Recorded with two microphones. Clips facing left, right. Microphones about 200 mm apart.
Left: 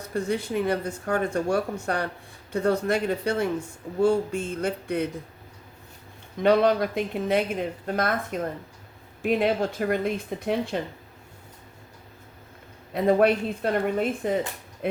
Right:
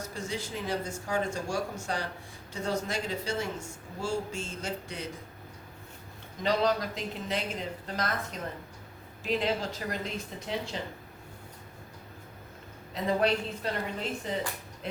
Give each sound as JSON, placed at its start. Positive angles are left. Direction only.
{"t": 0.0, "sound": "speech", "side_deg": 60}
{"t": 6.4, "sound": "speech", "side_deg": 55}
{"t": 12.9, "sound": "speech", "side_deg": 55}